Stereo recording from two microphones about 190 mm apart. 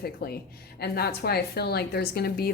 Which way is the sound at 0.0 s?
55° left (ahead or behind).